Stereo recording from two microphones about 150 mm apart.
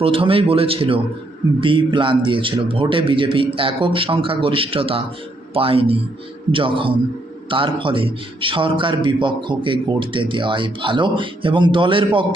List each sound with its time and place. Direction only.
0.0 s a man's voice: 35° right (ahead or behind)